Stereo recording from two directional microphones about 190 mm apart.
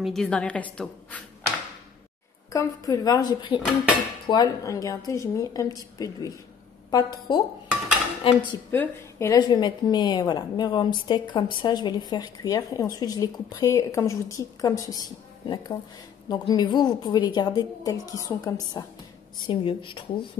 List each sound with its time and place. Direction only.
0.0 s a woman's voice: centre (ahead or behind)
2.5 s a woman's voice: 20° left (ahead or behind)
8.7 s a woman's voice: 15° left (ahead or behind)
9.4 s a woman's voice: 25° left (ahead or behind)